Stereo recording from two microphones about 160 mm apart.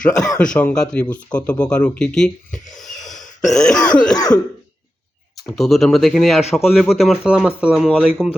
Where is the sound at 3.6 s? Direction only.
5° left (ahead or behind).